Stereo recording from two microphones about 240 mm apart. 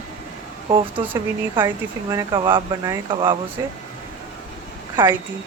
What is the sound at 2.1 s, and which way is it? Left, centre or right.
Speech, centre.